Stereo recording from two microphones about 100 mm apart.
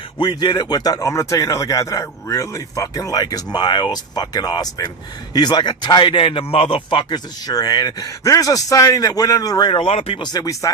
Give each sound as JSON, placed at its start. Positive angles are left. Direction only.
{"t": 0.2, "sound": "a man's voice", "side_deg": 45}
{"t": 0.9, "sound": "a man's voice", "side_deg": 30}
{"t": 7.1, "sound": "speech", "side_deg": 45}
{"t": 9.7, "sound": "speech", "side_deg": 80}
{"t": 10.3, "sound": "speech", "side_deg": 35}